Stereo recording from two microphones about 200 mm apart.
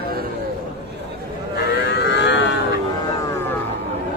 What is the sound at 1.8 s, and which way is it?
Siren, 60° left (ahead or behind).